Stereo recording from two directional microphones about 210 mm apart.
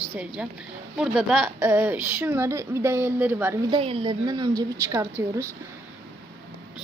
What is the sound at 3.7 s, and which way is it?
A woman's voice, 25° right (ahead or behind).